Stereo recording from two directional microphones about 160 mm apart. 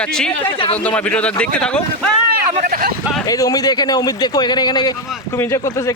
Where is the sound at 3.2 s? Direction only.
20° left (ahead or behind).